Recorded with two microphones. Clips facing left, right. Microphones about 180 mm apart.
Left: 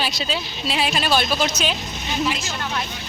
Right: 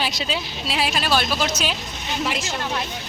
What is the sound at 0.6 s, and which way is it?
Speech, 5° right (ahead or behind).